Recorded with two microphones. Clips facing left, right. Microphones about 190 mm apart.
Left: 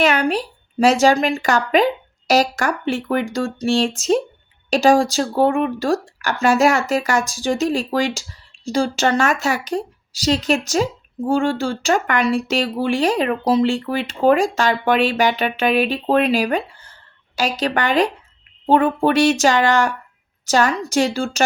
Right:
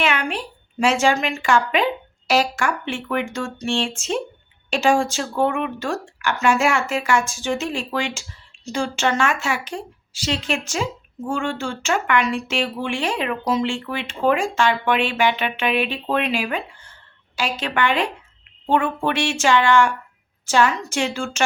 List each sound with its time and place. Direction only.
0.0 s speech: 40° left (ahead or behind)